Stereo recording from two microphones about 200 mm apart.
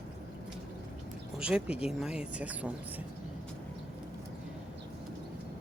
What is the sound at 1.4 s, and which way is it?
Speech, 5° right (ahead or behind).